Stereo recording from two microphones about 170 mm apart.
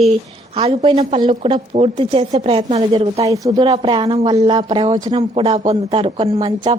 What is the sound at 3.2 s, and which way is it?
Speech, 20° right (ahead or behind).